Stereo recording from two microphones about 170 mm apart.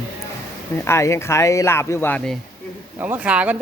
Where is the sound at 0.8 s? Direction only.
15° left (ahead or behind).